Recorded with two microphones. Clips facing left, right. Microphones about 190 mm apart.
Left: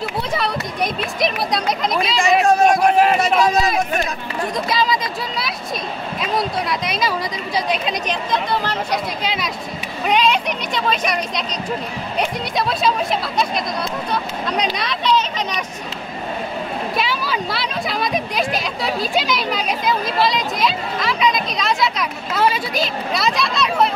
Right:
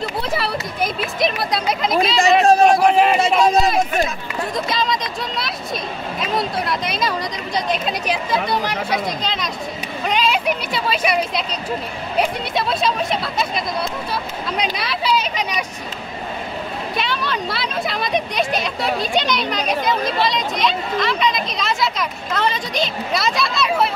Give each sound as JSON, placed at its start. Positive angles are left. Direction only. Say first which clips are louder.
{"t": 1.2, "sound": "speech", "louder": "even", "side_deg": 0}
{"t": 2.4, "sound": "speech", "louder": "right 2 dB", "side_deg": -35}
{"t": 2.9, "sound": "speech", "louder": "even", "side_deg": 0}
{"t": 8.1, "sound": "speech", "louder": "right 2 dB", "side_deg": -10}
{"t": 9.2, "sound": "speech", "louder": "left 1 dB", "side_deg": 10}
{"t": 10.0, "sound": "speech", "louder": "left 2 dB", "side_deg": 0}
{"t": 16.9, "sound": "speech", "louder": "right 1 dB", "side_deg": 5}